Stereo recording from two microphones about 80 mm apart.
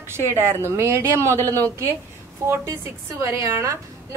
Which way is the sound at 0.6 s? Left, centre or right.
Right.